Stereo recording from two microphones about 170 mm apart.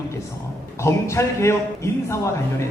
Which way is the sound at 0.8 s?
15° left (ahead or behind).